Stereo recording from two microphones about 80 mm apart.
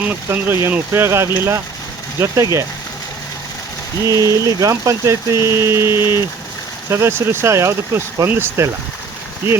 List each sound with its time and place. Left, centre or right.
0.3 s speech: right
4.0 s speech: right